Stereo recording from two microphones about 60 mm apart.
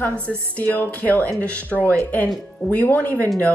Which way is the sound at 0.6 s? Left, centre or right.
Left.